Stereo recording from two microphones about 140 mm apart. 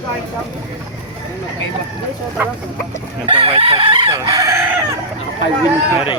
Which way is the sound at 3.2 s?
40° right (ahead or behind).